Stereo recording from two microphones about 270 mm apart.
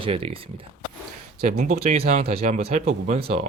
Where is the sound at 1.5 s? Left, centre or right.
Right.